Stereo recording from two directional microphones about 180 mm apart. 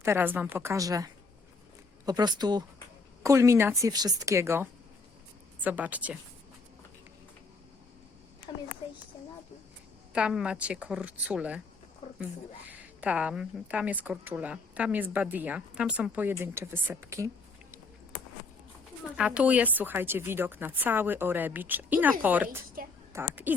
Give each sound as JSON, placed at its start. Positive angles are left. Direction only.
{"t": 0.0, "sound": "a woman's voice", "side_deg": -15}
{"t": 8.5, "sound": "a sound", "side_deg": 30}
{"t": 10.1, "sound": "a woman's voice", "side_deg": -5}
{"t": 12.6, "sound": "a woman's voice", "side_deg": -10}
{"t": 19.1, "sound": "a woman's voice", "side_deg": -5}